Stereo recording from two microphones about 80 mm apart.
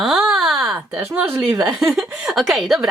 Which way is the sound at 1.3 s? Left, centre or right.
Centre.